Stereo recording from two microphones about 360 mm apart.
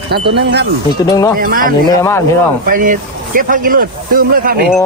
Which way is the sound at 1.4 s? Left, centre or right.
Right.